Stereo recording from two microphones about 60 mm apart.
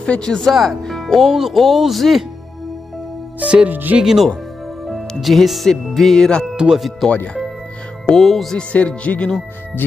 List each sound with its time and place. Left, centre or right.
0.0 s speech: centre
3.3 s speech: right
3.7 s speech: right
4.0 s speech: centre
6.5 s speech: centre
7.0 s speech: centre
8.5 s music: centre